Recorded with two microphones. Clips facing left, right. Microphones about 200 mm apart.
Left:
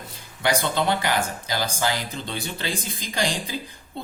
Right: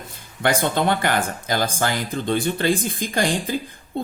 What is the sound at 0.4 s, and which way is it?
Speech, 55° right (ahead or behind).